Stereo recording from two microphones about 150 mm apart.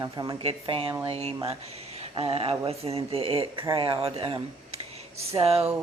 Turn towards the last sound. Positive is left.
turn(degrees=-40)  # may be behind; listen again after turning